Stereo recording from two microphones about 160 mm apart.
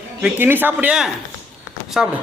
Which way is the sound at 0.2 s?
10° right (ahead or behind).